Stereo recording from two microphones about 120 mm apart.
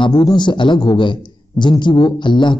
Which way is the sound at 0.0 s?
35° left (ahead or behind).